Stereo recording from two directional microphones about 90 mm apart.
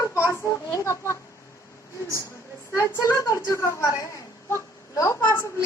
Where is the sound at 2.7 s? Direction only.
35° left (ahead or behind).